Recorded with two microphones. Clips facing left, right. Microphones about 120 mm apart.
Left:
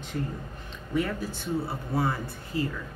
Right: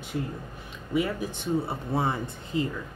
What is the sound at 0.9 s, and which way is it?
Speech, 15° right (ahead or behind).